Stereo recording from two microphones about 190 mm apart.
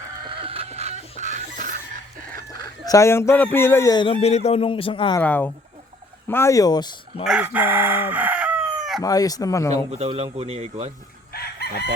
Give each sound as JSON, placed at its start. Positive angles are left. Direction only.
{"t": 0.3, "sound": "chicken", "side_deg": -30}
{"t": 1.2, "sound": "music", "side_deg": -40}
{"t": 2.8, "sound": "speech", "side_deg": 15}
{"t": 5.2, "sound": "speech", "side_deg": 10}
{"t": 7.3, "sound": "crowing", "side_deg": -5}
{"t": 9.0, "sound": "speech", "side_deg": 20}
{"t": 9.9, "sound": "speech", "side_deg": -30}
{"t": 11.3, "sound": "chicken", "side_deg": 55}